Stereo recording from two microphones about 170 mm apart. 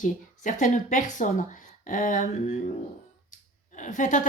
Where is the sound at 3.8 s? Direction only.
50° left (ahead or behind).